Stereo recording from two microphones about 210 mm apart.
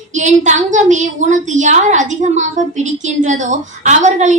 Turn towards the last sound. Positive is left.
turn(degrees=-35)  # may be behind; listen again after turning